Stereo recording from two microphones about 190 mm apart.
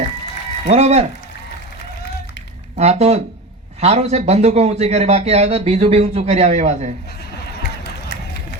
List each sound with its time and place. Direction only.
0.7 s a man's voice: 35° right (ahead or behind)
2.7 s a man's voice: 35° right (ahead or behind)